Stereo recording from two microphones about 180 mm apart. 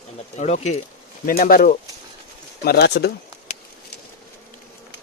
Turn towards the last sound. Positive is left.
turn(degrees=70)  # may be behind; listen again after turning